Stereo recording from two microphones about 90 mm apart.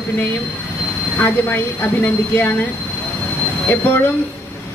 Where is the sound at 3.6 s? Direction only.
20° left (ahead or behind).